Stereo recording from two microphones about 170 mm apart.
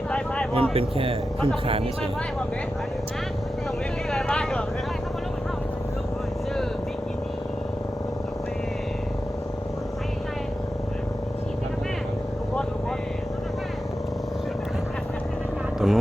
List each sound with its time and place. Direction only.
0.5 s speech: 35° right (ahead or behind)
4.1 s vehicle: 5° left (ahead or behind)
15.8 s speech: centre (ahead or behind)